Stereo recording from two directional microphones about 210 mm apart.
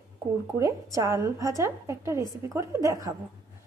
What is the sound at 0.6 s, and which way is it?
A woman's voice, 15° right (ahead or behind).